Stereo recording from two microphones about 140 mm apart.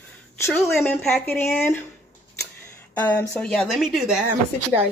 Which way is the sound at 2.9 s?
10° left (ahead or behind).